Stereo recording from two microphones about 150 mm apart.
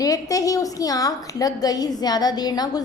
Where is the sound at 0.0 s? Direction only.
25° left (ahead or behind).